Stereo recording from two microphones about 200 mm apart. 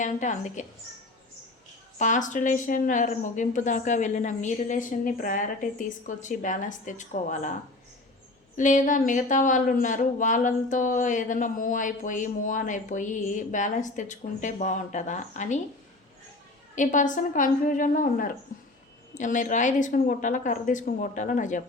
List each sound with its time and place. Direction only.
0.0 s speech: 35° left (ahead or behind)
2.0 s speech: 40° left (ahead or behind)
8.5 s speech: 40° left (ahead or behind)
16.7 s speech: 40° left (ahead or behind)